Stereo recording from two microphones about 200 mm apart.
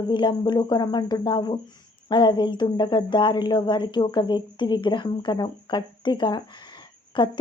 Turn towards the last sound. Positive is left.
turn(degrees=25)  # may be behind; listen again after turning